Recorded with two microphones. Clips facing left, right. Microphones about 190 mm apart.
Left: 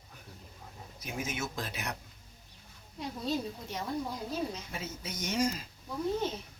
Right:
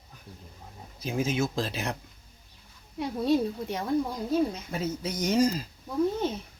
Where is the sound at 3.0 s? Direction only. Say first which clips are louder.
Right 9 dB; 60° right (ahead or behind).